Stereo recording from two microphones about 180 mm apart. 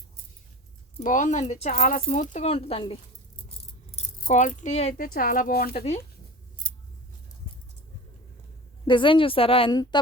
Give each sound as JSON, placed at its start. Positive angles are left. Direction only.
{"t": 0.9, "sound": "speech", "side_deg": 45}
{"t": 4.2, "sound": "speech", "side_deg": 45}
{"t": 5.7, "sound": "speech", "side_deg": 35}
{"t": 8.9, "sound": "speech", "side_deg": 25}